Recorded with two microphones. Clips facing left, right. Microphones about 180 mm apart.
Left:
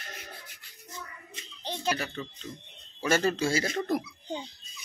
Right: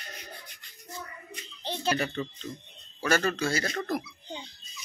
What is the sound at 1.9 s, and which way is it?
Speech, centre (ahead or behind).